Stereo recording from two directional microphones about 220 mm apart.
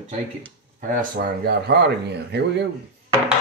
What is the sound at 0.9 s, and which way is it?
Speech, 40° right (ahead or behind).